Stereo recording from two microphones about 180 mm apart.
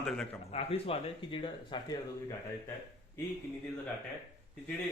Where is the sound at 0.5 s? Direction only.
35° left (ahead or behind).